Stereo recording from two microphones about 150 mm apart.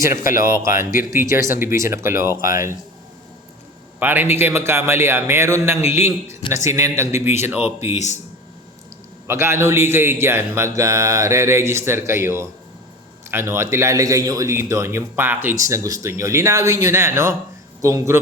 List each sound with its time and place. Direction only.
0.0 s a man's voice: 20° right (ahead or behind)
4.0 s speech: 15° right (ahead or behind)
7.8 s speech: 50° left (ahead or behind)
9.2 s a man's voice: 20° right (ahead or behind)